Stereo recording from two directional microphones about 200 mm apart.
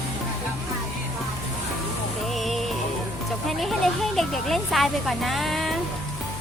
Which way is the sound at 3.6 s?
Centre (ahead or behind).